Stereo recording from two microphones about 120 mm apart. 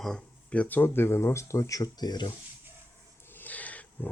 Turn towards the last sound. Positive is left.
turn(degrees=10)  # may be behind; listen again after turning